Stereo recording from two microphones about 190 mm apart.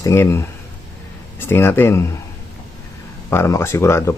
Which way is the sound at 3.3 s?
15° left (ahead or behind).